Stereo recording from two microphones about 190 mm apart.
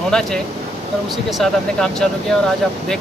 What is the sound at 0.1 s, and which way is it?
Speech, 5° left (ahead or behind).